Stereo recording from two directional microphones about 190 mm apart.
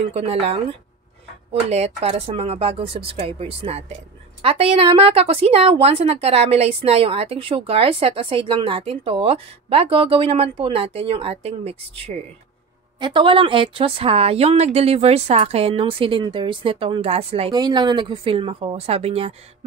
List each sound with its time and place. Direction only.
0.1 s a woman's voice: 30° right (ahead or behind)
13.0 s speech: 25° right (ahead or behind)